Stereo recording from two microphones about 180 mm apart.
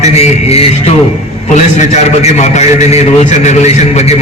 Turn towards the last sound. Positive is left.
turn(degrees=35)  # may be behind; listen again after turning